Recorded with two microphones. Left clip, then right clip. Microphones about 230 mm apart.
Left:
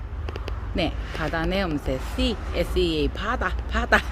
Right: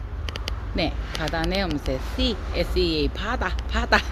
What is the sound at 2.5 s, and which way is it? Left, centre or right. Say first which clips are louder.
Speech: even; centre.